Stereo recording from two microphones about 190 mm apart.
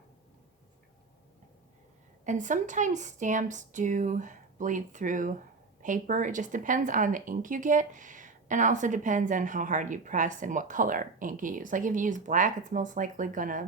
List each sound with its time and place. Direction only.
2.2 s a woman's voice: 40° right (ahead or behind)